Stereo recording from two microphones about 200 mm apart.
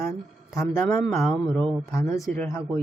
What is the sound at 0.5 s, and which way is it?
Speech, 10° left (ahead or behind).